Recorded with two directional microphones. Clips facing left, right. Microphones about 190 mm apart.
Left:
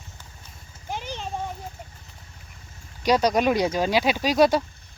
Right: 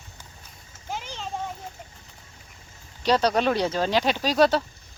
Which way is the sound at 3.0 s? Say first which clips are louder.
Left 1 dB; 10° left (ahead or behind).